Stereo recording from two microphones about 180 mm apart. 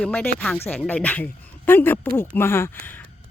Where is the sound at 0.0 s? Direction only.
10° left (ahead or behind).